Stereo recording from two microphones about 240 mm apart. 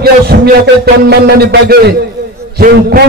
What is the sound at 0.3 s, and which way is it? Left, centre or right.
Music, right.